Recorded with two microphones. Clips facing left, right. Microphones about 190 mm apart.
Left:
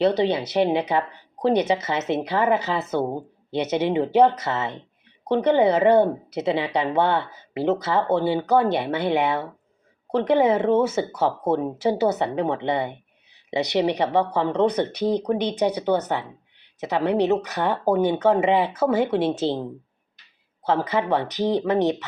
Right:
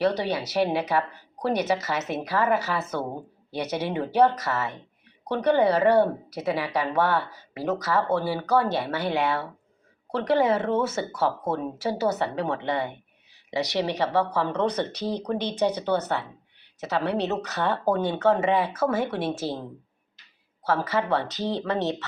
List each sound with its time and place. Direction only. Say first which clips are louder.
0.0 s speech: left 5 dB; 20° left (ahead or behind)
20.7 s speech: left 3 dB; 20° left (ahead or behind)